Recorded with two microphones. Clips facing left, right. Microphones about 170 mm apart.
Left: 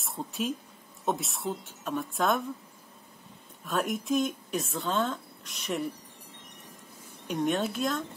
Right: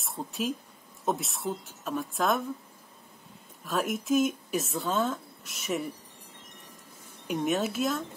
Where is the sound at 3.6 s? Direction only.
Centre (ahead or behind).